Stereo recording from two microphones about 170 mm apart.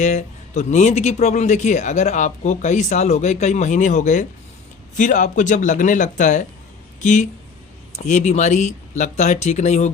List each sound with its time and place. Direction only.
0.0 s speech: 40° left (ahead or behind)